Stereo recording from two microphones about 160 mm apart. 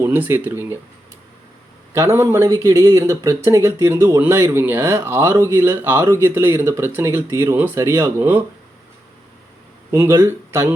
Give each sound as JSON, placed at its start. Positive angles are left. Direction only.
{"t": 0.0, "sound": "speech", "side_deg": -10}
{"t": 1.9, "sound": "speech", "side_deg": -15}
{"t": 9.9, "sound": "speech", "side_deg": -15}